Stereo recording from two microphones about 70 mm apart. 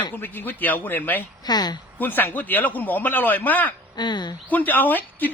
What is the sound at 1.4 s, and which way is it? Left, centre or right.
Speech, left.